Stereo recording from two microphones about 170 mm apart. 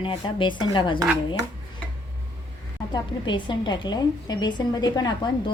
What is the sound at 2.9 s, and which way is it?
A woman's voice, 25° left (ahead or behind).